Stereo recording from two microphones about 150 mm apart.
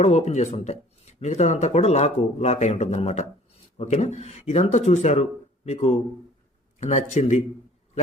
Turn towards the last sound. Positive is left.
turn(degrees=55)  # may be behind; listen again after turning